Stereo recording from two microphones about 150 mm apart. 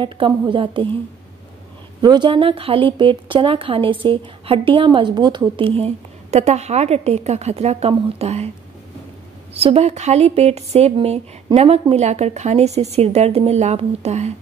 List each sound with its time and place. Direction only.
0.0 s a woman's voice: 35° right (ahead or behind)
2.0 s a woman's voice: 30° right (ahead or behind)
9.5 s a woman's voice: 40° right (ahead or behind)